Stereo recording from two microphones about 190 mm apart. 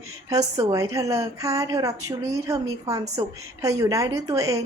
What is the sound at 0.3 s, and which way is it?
A woman's voice, 20° right (ahead or behind).